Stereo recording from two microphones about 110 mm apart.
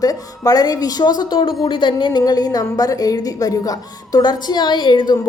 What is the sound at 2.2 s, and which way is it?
A woman's voice, 35° left (ahead or behind).